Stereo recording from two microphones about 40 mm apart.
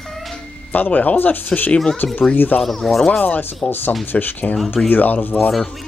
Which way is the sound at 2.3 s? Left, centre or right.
Left.